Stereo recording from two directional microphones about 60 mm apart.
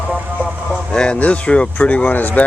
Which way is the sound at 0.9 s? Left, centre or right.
Centre.